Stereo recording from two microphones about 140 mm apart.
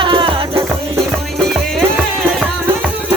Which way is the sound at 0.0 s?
35° right (ahead or behind).